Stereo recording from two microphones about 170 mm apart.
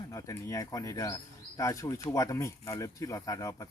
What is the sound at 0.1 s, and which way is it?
Speech, 20° left (ahead or behind).